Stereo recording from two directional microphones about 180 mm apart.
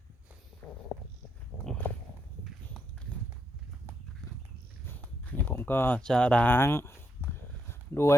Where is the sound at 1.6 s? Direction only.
5° left (ahead or behind).